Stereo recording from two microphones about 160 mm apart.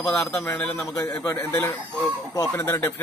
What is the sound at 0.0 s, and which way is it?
Speech, 5° left (ahead or behind).